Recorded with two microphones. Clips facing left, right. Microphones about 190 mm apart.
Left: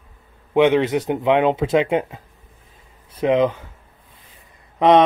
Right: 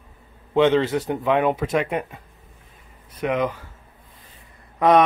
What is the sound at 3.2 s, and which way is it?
Speech, 25° left (ahead or behind).